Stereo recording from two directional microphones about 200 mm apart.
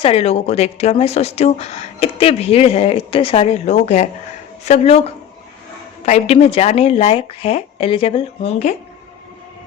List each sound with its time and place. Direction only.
0.0 s speech: 30° left (ahead or behind)